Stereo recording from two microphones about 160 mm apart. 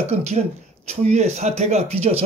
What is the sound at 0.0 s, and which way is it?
Speech, 40° right (ahead or behind).